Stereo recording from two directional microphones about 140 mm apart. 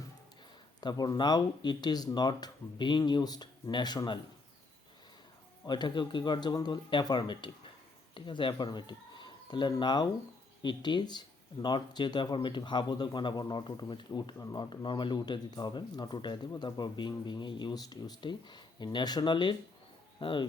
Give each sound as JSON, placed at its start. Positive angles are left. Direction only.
{"t": 0.8, "sound": "speech", "side_deg": 30}
{"t": 5.6, "sound": "speech", "side_deg": 35}